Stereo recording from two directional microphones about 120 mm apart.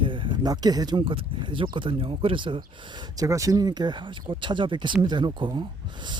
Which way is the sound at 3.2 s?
25° right (ahead or behind).